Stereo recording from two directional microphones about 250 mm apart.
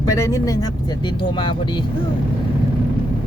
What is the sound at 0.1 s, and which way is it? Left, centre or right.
Speech, centre.